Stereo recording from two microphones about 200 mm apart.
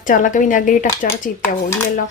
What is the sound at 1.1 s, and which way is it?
Speech, 15° left (ahead or behind).